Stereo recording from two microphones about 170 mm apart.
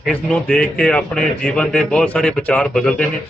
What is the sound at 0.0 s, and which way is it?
A man's voice, 5° left (ahead or behind).